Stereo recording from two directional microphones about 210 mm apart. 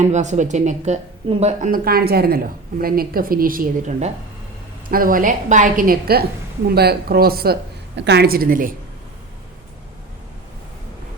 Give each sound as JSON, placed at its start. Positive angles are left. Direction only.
{"t": 0.0, "sound": "a woman's voice", "side_deg": -35}